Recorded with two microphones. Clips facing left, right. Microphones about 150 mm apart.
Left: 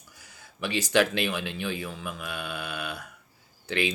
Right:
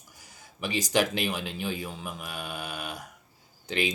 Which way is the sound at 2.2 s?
40° right (ahead or behind).